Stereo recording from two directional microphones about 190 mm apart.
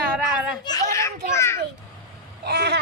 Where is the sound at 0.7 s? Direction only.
15° left (ahead or behind).